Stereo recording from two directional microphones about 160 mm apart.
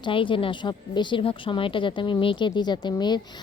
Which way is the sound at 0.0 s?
30° left (ahead or behind).